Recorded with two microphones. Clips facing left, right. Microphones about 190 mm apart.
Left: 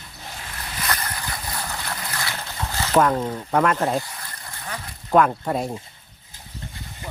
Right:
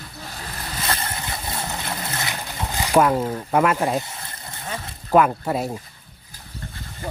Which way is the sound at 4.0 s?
25° right (ahead or behind).